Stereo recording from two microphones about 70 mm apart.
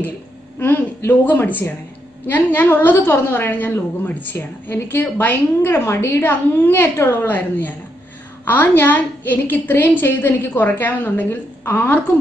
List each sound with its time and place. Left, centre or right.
0.6 s a woman's voice: left
6.5 s a woman's voice: left